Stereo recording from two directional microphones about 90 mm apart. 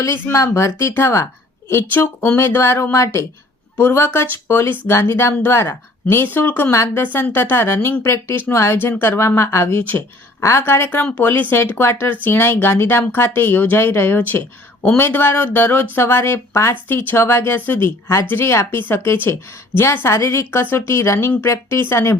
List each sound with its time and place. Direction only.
0.3 s speech: 35° left (ahead or behind)